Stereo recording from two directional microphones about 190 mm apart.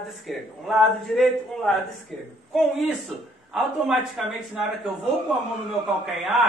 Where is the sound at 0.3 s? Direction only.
Centre (ahead or behind).